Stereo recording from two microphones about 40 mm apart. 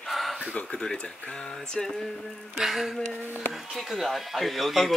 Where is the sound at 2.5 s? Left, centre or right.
Centre.